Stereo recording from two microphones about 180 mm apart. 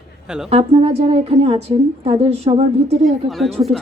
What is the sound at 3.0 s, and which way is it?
Speech, centre (ahead or behind).